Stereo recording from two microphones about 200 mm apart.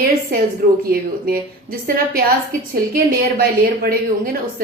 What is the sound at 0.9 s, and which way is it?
Speech, 50° right (ahead or behind).